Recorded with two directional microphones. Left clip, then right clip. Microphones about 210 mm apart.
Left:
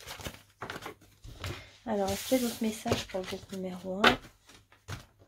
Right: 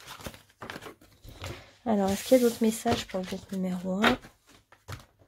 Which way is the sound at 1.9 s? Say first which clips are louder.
Right 6 dB; 45° right (ahead or behind).